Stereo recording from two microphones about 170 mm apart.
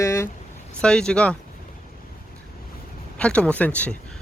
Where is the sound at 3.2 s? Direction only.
5° left (ahead or behind).